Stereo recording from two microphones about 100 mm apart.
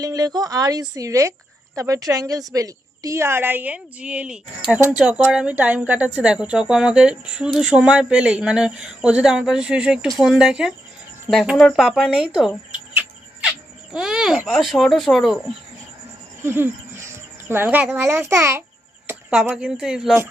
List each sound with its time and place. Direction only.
0.0 s a woman's voice: 40° right (ahead or behind); by 10.7 s 5° right (ahead or behind)
11.5 s speech: 5° left (ahead or behind)
11.9 s speech: 5° right (ahead or behind)
13.9 s speech: 5° right (ahead or behind)
16.4 s speech: 20° right (ahead or behind)
19.5 s speech: 10° right (ahead or behind)